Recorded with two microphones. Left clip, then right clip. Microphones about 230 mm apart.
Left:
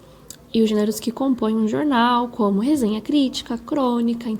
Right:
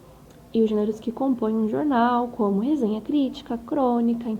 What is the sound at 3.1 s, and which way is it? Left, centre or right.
A woman's voice, left.